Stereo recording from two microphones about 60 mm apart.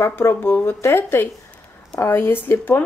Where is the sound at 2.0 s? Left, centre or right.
Left.